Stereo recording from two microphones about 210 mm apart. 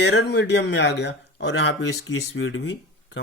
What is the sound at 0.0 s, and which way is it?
Speech, 55° left (ahead or behind).